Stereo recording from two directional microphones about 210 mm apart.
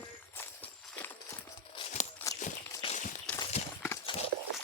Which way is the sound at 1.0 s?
10° left (ahead or behind).